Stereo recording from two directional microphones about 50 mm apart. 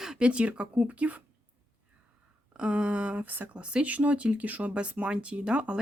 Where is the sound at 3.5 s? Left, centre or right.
Right.